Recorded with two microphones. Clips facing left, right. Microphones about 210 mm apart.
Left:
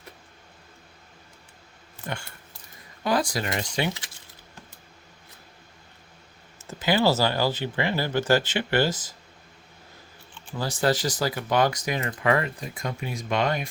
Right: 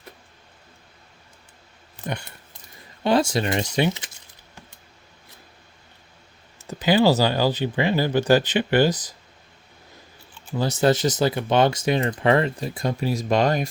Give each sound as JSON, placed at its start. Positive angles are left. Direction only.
{"t": 2.0, "sound": "a sound", "side_deg": -20}
{"t": 3.0, "sound": "speech", "side_deg": -25}
{"t": 6.7, "sound": "speech", "side_deg": -20}
{"t": 10.6, "sound": "speech", "side_deg": -20}